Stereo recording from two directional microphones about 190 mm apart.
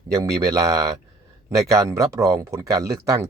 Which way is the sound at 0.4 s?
15° right (ahead or behind).